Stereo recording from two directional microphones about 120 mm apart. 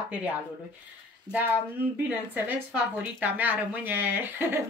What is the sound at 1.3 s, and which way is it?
Speech, 15° left (ahead or behind).